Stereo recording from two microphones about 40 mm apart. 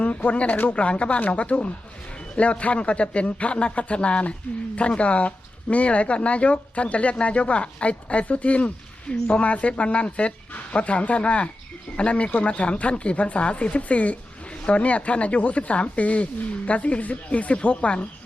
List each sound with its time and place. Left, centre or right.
0.0 s speech: left
0.8 s speech: left